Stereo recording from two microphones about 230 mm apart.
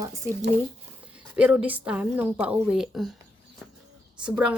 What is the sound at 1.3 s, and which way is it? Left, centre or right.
A woman's voice, centre.